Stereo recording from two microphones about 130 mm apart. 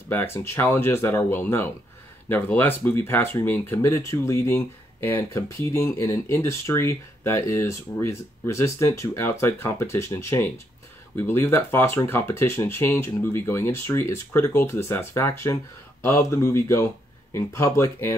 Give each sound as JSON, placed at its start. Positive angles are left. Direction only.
{"t": 0.1, "sound": "speech", "side_deg": 20}